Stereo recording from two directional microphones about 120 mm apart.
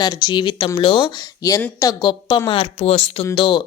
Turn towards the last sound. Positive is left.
turn(degrees=45)  # may be behind; listen again after turning